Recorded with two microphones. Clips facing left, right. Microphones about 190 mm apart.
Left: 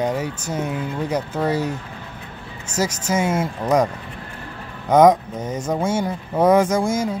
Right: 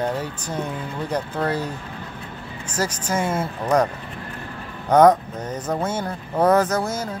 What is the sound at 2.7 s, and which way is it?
Speech, 10° left (ahead or behind).